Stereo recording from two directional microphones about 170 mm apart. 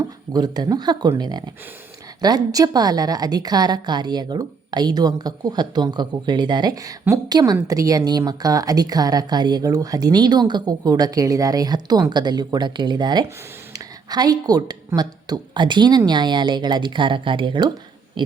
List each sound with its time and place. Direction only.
0.3 s a woman's voice: 25° right (ahead or behind)